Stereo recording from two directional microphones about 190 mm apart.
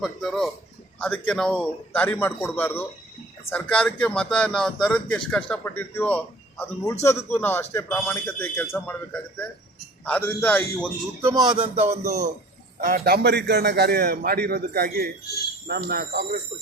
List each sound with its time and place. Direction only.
0.0 s a man's voice: centre (ahead or behind)
10.1 s a man's voice: 10° left (ahead or behind)
11.2 s music: 15° right (ahead or behind)
12.8 s a man's voice: 50° right (ahead or behind)